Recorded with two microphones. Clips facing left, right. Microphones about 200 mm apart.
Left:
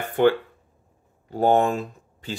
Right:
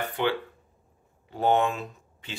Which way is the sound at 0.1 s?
45° left (ahead or behind).